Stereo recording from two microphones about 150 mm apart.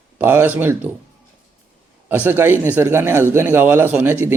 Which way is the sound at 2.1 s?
15° right (ahead or behind).